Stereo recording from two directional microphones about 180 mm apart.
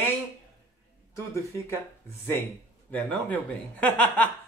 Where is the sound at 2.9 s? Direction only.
10° left (ahead or behind).